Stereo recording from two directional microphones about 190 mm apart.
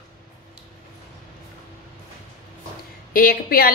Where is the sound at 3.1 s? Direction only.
50° left (ahead or behind).